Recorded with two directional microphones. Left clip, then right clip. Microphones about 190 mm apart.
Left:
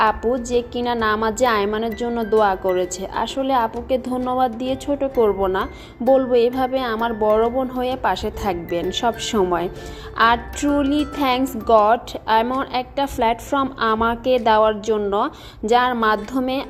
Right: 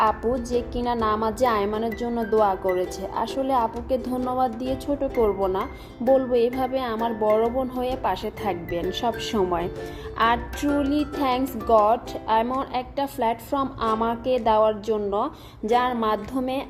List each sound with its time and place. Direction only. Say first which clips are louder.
0.5 s a woman's voice: left 4 dB; 15° left (ahead or behind)